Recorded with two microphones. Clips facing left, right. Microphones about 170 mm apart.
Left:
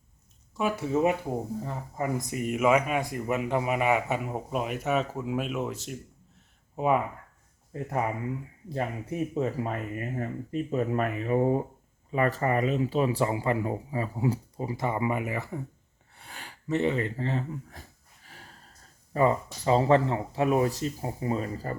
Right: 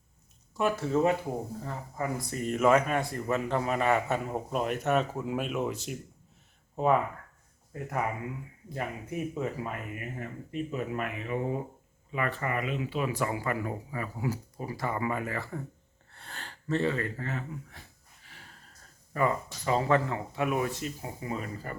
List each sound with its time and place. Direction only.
0.8 s speech: 15° left (ahead or behind)
6.7 s speech: 10° left (ahead or behind)
7.7 s speech: 30° left (ahead or behind)
19.1 s speech: 30° left (ahead or behind)